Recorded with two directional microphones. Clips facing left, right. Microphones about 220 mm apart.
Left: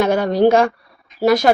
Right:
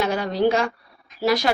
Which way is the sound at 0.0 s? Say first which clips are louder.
Left 6 dB; 50° left (ahead or behind).